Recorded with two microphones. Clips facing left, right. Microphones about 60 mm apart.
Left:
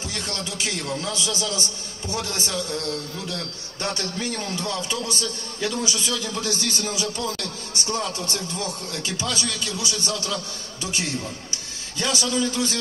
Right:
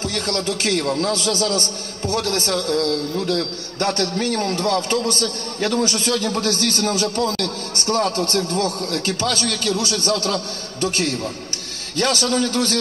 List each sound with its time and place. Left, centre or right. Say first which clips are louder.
0.0 s a man's voice: right 8 dB; right